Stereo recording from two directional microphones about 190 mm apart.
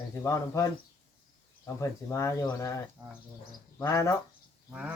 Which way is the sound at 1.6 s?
15° left (ahead or behind).